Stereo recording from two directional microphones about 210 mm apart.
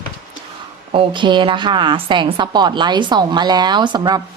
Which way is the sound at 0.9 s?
25° right (ahead or behind).